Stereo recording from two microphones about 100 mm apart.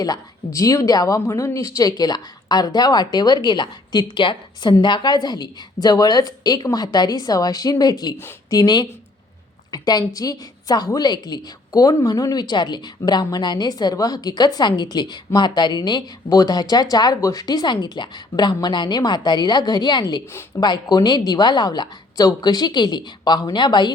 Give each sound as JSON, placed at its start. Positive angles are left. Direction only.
{"t": 0.0, "sound": "a woman's voice", "side_deg": 35}